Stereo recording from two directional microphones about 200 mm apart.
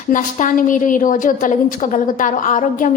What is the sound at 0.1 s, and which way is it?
A woman's voice, 40° left (ahead or behind).